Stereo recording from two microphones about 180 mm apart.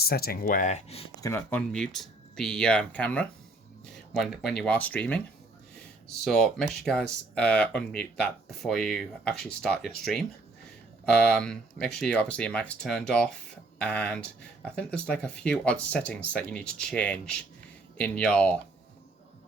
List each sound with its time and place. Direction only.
0.0 s speech: 60° left (ahead or behind); by 1.0 s 35° left (ahead or behind)
1.2 s speech: 10° left (ahead or behind)
6.2 s speech: centre (ahead or behind)